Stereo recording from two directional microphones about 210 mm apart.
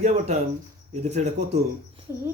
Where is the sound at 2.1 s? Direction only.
10° right (ahead or behind).